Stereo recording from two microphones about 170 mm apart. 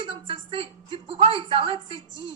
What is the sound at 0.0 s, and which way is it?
A woman's voice, 30° right (ahead or behind).